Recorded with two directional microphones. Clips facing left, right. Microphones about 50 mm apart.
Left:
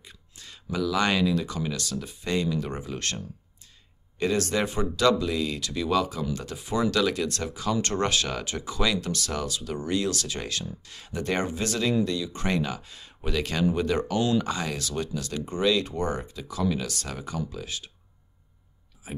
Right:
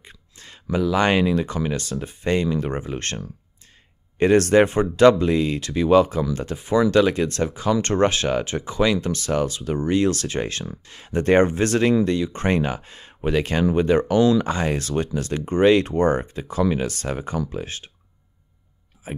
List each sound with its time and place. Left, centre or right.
0.0 s speech: right
4.2 s speech: right
19.0 s speech: right